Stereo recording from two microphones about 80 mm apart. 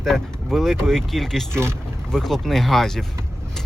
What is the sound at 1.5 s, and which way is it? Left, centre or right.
Speech, right.